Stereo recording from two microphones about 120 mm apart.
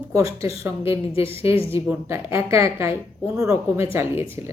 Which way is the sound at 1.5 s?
50° left (ahead or behind).